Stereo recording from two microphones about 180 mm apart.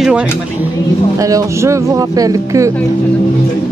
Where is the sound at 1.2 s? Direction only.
20° right (ahead or behind).